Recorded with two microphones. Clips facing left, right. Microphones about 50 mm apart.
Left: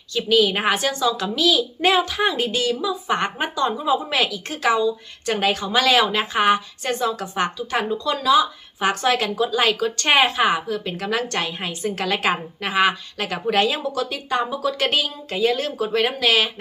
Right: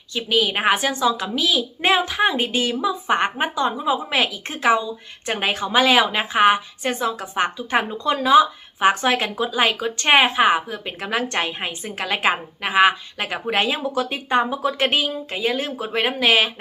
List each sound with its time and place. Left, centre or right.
0.1 s a woman's voice: centre